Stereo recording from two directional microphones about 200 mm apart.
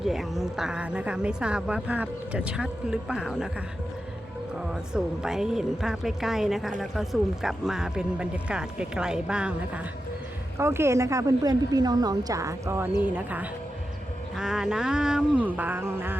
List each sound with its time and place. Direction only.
0.0 s a woman's voice: centre (ahead or behind)
4.7 s a woman's voice: 5° right (ahead or behind)